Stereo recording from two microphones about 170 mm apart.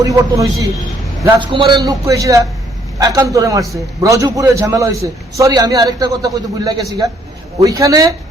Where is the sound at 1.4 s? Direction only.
30° right (ahead or behind).